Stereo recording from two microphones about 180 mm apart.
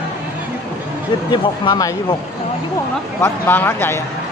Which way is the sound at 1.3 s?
25° left (ahead or behind).